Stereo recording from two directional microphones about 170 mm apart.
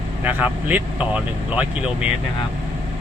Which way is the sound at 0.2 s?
10° right (ahead or behind).